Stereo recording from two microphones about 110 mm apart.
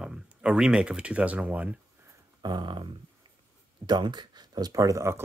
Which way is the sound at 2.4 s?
40° right (ahead or behind).